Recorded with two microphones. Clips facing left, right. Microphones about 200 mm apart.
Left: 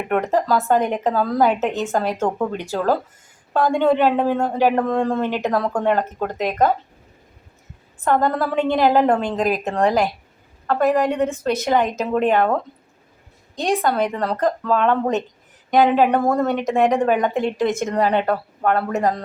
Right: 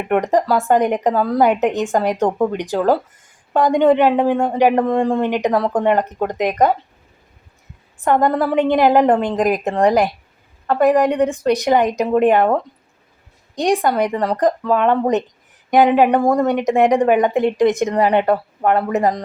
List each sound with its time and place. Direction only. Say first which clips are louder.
0.1 s a woman's voice: right 3 dB; 15° right (ahead or behind)
8.0 s a woman's voice: right 3 dB; 15° right (ahead or behind)
13.6 s a woman's voice: right 3 dB; 15° right (ahead or behind)